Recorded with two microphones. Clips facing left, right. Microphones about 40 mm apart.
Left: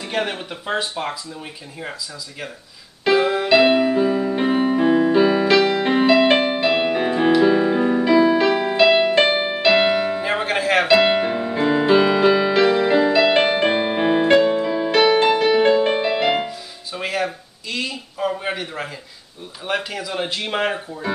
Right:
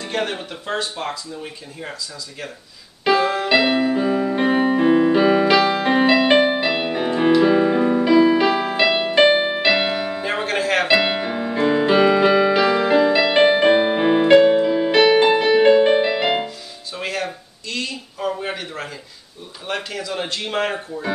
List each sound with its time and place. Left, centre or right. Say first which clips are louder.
0.0 s speech: even; centre
3.2 s speech: left 1 dB; centre
3.5 s music: left 3 dB; centre
5.6 s music: even; right
5.9 s music: right 1 dB; centre
6.1 s music: right 1 dB; centre
10.9 s piano: left 3 dB; centre
12.0 s music: right 1 dB; centre
16.4 s music: left 1 dB; centre
19.6 s speech: left 2 dB; centre